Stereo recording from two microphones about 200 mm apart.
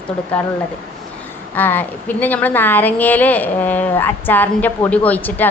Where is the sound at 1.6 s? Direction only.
10° left (ahead or behind).